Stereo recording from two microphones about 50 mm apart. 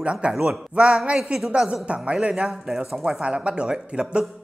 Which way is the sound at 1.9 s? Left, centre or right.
Right.